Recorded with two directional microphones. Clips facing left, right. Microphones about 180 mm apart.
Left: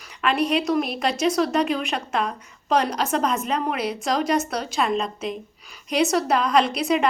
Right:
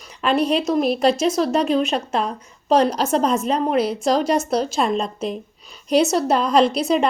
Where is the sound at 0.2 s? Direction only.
30° right (ahead or behind).